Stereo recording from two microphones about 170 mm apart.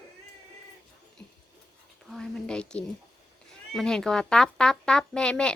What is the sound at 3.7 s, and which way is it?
Speech, 5° left (ahead or behind).